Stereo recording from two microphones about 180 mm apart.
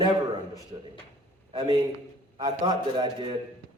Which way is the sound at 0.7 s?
30° right (ahead or behind).